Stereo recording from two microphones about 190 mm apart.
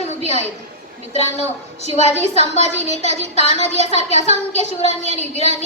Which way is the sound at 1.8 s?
35° left (ahead or behind).